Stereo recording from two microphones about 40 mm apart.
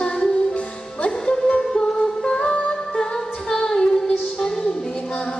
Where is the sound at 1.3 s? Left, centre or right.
Centre.